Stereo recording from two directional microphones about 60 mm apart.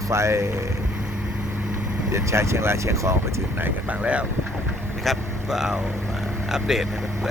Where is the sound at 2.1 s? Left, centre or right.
Right.